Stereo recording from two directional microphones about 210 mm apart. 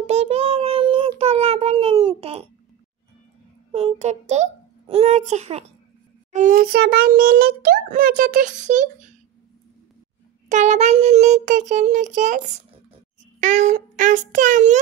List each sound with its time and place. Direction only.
0.0 s child singing: 30° right (ahead or behind)
3.7 s a sound: 30° right (ahead or behind)
6.3 s a child's voice: 40° right (ahead or behind)
10.5 s child singing: 35° right (ahead or behind)
13.4 s child singing: 35° right (ahead or behind)